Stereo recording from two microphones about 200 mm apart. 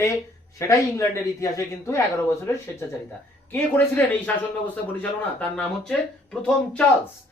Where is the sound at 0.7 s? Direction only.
15° left (ahead or behind).